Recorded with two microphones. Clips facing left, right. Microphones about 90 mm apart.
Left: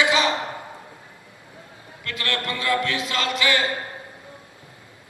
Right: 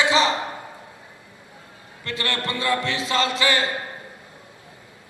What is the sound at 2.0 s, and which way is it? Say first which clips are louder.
A man's voice: right 1 dB; 30° right (ahead or behind).